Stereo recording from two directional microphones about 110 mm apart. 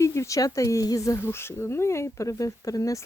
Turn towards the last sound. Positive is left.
turn(degrees=30)  # may be behind; listen again after turning